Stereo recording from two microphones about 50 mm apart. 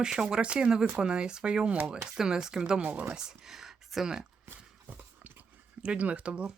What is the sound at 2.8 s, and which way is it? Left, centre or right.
Speech, right.